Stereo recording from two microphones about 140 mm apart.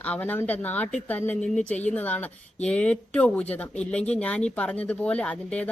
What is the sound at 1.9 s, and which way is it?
Speech, 10° left (ahead or behind).